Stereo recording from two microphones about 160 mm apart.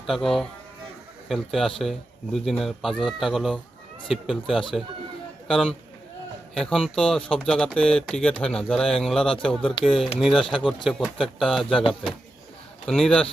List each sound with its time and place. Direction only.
0.0 s a man's voice: centre (ahead or behind)
12.8 s speech: 5° left (ahead or behind)